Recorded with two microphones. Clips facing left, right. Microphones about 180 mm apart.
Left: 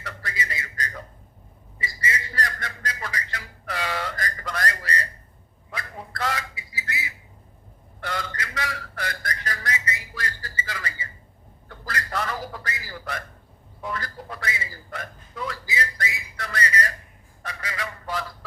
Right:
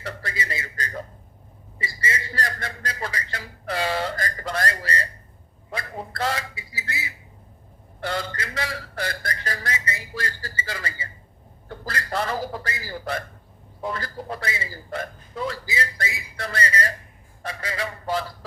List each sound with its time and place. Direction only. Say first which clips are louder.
0.0 s speech: right 2 dB; 30° right (ahead or behind)